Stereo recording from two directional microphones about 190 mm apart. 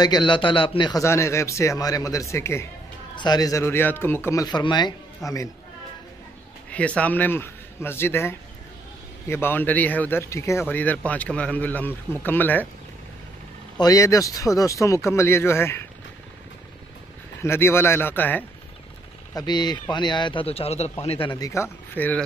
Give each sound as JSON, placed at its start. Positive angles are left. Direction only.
{"t": 0.0, "sound": "a man's voice", "side_deg": 25}
{"t": 6.7, "sound": "a man's voice", "side_deg": 5}
{"t": 13.7, "sound": "a man's voice", "side_deg": 20}
{"t": 17.4, "sound": "a man's voice", "side_deg": 15}
{"t": 19.3, "sound": "a man's voice", "side_deg": 20}